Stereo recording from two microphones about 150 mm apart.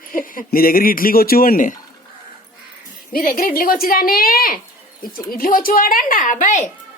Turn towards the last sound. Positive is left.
turn(degrees=55)  # may be behind; listen again after turning